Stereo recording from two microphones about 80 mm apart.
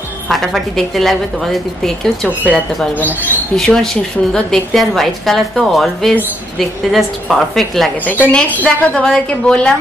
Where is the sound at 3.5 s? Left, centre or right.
Centre.